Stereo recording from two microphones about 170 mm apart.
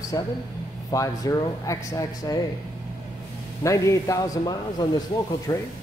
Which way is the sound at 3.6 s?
20° left (ahead or behind).